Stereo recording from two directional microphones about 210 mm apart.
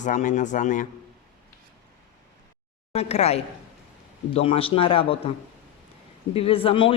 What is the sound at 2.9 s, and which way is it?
Speech, 30° left (ahead or behind).